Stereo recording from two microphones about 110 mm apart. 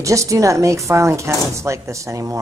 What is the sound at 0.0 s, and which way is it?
Speech, 30° right (ahead or behind).